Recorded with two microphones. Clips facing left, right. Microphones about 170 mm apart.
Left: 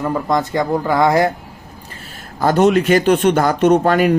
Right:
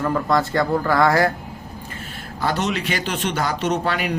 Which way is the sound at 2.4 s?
50° left (ahead or behind).